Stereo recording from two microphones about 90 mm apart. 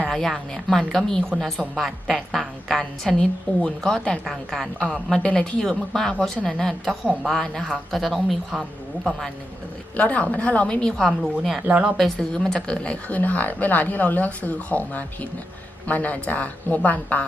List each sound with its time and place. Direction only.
0.1 s a woman's voice: centre (ahead or behind)
7.0 s speech: 10° right (ahead or behind)
7.3 s a woman's voice: 5° left (ahead or behind)
9.9 s speech: 15° left (ahead or behind); by 11.9 s 10° right (ahead or behind)
11.9 s speech: 5° left (ahead or behind)